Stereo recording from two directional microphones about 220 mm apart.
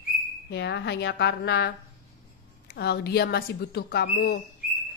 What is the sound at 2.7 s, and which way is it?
Speech, 45° left (ahead or behind).